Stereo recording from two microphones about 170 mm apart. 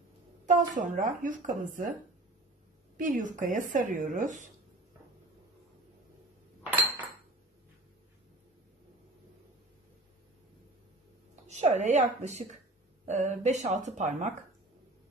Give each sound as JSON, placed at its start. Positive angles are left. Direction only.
{"t": 0.5, "sound": "a woman's voice", "side_deg": -50}
{"t": 3.0, "sound": "a woman's voice", "side_deg": -50}
{"t": 6.6, "sound": "dishes", "side_deg": -10}
{"t": 11.4, "sound": "a woman's voice", "side_deg": -40}